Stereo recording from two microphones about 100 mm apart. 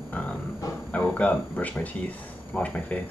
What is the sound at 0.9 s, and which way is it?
Speech, 15° left (ahead or behind).